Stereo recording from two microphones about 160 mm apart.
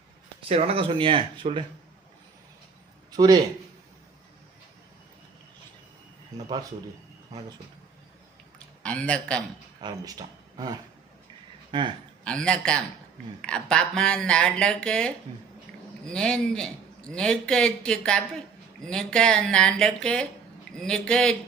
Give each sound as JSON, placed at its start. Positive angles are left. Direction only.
{"t": 0.4, "sound": "speech", "side_deg": -40}
{"t": 3.1, "sound": "a man's voice", "side_deg": -25}
{"t": 8.5, "sound": "a man's voice", "side_deg": 5}
{"t": 9.8, "sound": "speech", "side_deg": -25}
{"t": 12.2, "sound": "a man's voice", "side_deg": 5}